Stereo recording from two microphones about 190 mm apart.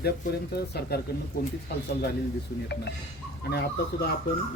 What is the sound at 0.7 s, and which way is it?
Speech, 55° left (ahead or behind).